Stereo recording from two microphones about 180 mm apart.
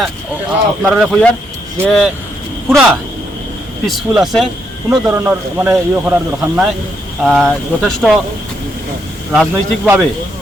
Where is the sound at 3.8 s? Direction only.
Centre (ahead or behind).